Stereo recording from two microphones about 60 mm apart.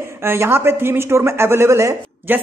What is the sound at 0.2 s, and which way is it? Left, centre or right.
A man's voice, right.